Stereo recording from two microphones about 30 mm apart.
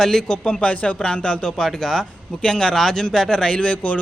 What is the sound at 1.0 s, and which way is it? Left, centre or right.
Speech, left.